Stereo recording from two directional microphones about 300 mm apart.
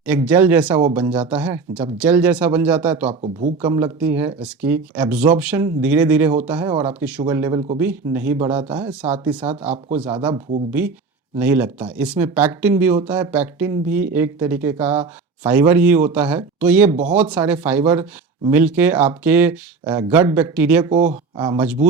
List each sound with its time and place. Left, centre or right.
0.0 s speech: centre
8.9 s speech: centre
9.6 s speech: right
10.3 s speech: centre
21.0 s speech: right
21.4 s speech: centre